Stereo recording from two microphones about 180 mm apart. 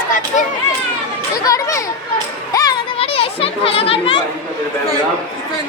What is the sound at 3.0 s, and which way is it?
Children playing, 30° left (ahead or behind).